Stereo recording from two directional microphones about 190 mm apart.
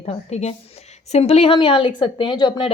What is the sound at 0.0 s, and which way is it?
A woman's voice, 35° left (ahead or behind).